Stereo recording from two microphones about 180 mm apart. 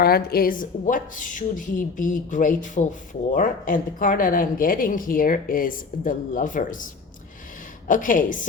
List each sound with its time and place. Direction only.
0.0 s a woman's voice: 60° left (ahead or behind)